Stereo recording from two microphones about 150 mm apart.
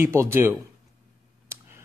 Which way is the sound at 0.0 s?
15° right (ahead or behind).